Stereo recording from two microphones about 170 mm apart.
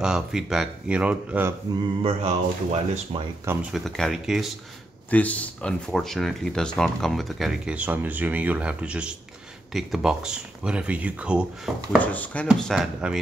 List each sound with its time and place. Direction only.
0.0 s speech: 5° right (ahead or behind)
2.0 s speech: 40° right (ahead or behind)
3.7 s speech: centre (ahead or behind)
12.0 s speech: 10° left (ahead or behind)
12.4 s speech: 5° right (ahead or behind)